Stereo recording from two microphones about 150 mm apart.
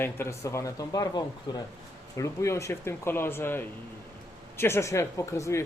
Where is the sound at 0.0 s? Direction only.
15° left (ahead or behind).